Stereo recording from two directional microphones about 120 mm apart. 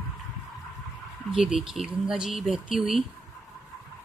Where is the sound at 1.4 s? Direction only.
5° right (ahead or behind).